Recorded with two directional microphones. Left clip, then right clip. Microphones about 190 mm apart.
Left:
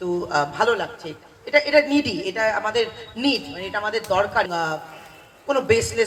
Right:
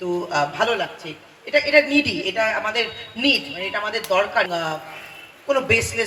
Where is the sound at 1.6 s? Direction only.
15° right (ahead or behind).